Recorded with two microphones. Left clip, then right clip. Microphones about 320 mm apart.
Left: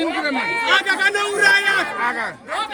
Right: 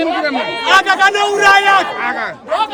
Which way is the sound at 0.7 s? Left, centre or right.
Centre.